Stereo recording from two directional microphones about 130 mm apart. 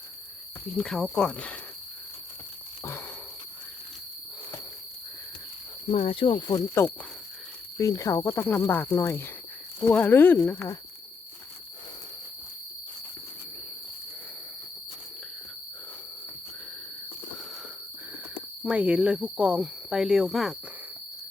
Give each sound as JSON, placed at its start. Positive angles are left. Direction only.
{"t": 0.8, "sound": "speech", "side_deg": 5}
{"t": 6.1, "sound": "speech", "side_deg": 45}
{"t": 6.6, "sound": "speech", "side_deg": 20}
{"t": 18.6, "sound": "speech", "side_deg": -10}